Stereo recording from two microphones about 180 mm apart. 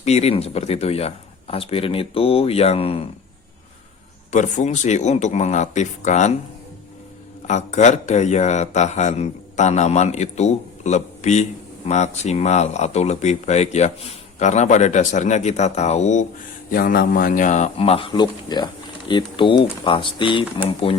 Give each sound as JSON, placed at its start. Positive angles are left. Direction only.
{"t": 0.0, "sound": "speech", "side_deg": 35}
{"t": 4.3, "sound": "speech", "side_deg": 40}
{"t": 7.4, "sound": "speech", "side_deg": 40}
{"t": 16.7, "sound": "speech", "side_deg": 55}